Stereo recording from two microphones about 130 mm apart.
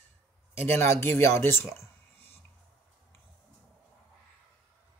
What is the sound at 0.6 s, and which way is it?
Speech, 15° left (ahead or behind).